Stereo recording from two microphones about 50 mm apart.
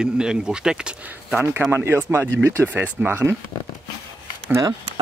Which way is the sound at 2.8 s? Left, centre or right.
Right.